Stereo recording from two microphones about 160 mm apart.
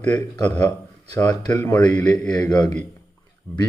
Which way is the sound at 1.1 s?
20° left (ahead or behind).